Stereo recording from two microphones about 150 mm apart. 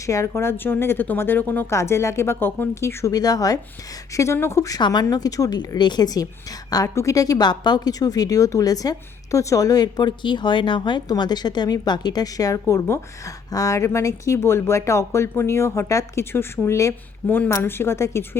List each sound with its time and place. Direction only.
0.0 s speech: 20° left (ahead or behind)